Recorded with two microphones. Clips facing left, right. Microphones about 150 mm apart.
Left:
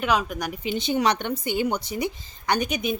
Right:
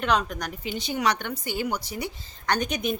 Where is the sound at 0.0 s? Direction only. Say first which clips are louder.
Left 1 dB; 5° left (ahead or behind).